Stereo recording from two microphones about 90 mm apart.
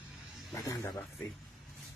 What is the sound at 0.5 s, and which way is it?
Speech, 35° left (ahead or behind).